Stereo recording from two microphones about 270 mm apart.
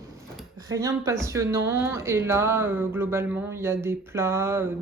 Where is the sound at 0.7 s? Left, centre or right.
Centre.